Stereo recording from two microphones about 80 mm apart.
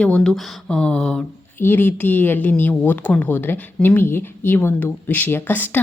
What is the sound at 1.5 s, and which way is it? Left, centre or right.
Speech, left.